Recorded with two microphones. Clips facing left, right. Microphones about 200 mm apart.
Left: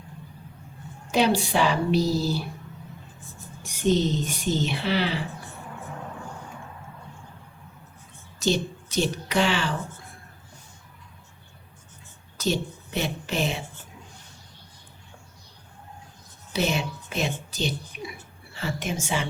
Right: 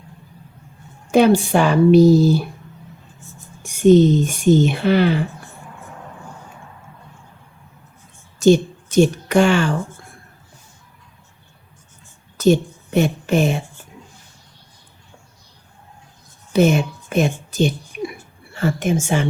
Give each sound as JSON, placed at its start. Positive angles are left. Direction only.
{"t": 1.1, "sound": "speech", "side_deg": -50}
{"t": 3.6, "sound": "speech", "side_deg": -50}
{"t": 8.4, "sound": "a woman's voice", "side_deg": -50}
{"t": 12.4, "sound": "a woman's voice", "side_deg": -50}
{"t": 16.5, "sound": "speech", "side_deg": -50}